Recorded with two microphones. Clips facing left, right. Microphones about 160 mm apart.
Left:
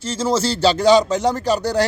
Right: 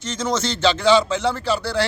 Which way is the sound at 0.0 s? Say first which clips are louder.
Left 4 dB; 30° left (ahead or behind).